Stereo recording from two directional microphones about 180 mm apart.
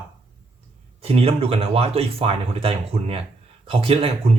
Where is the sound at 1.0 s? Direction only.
35° right (ahead or behind).